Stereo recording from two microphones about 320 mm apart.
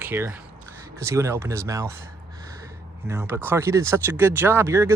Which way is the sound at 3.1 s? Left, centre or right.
Centre.